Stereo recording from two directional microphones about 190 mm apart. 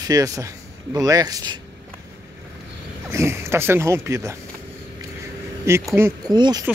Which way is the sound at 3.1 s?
15° right (ahead or behind).